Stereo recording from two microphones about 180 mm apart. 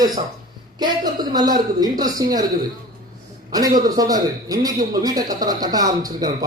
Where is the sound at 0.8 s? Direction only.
20° right (ahead or behind).